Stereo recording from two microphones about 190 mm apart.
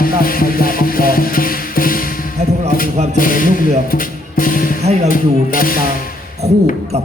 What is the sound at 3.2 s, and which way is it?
Music, 45° left (ahead or behind).